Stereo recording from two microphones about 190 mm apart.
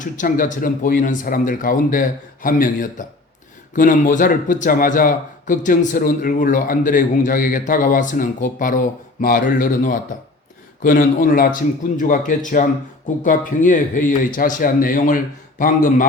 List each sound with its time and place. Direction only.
0.0 s speech: 45° left (ahead or behind)